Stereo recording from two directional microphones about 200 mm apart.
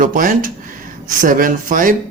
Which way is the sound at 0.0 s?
40° right (ahead or behind).